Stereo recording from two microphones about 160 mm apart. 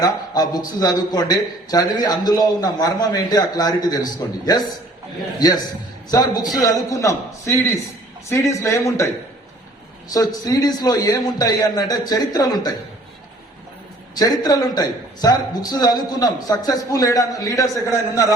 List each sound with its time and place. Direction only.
0.0 s a man's voice: 25° left (ahead or behind)
10.1 s a man's voice: 25° left (ahead or behind)
14.2 s a man's voice: 25° left (ahead or behind)